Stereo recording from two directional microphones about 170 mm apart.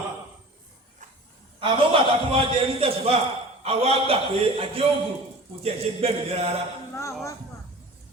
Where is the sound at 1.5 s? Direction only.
30° right (ahead or behind).